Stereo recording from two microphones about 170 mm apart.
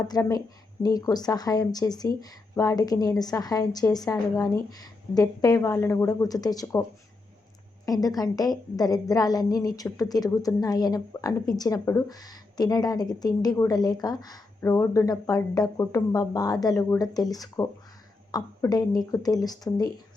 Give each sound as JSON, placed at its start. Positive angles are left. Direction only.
{"t": 0.1, "sound": "a woman's voice", "side_deg": 20}
{"t": 7.9, "sound": "a woman's voice", "side_deg": 20}